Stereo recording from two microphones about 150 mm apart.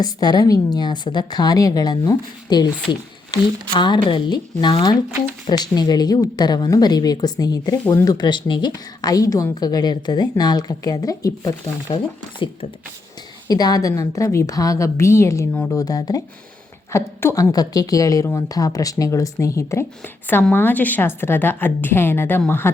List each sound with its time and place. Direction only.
0.0 s a woman's voice: 25° left (ahead or behind)
13.5 s a woman's voice: 25° left (ahead or behind)